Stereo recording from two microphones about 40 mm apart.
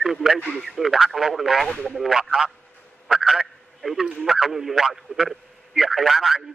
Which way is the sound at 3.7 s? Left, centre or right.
Centre.